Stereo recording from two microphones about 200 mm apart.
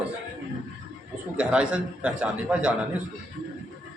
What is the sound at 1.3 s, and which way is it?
A man's voice, 5° right (ahead or behind).